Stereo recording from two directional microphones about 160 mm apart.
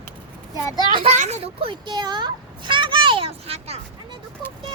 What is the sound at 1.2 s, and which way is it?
A child's voice, 45° right (ahead or behind).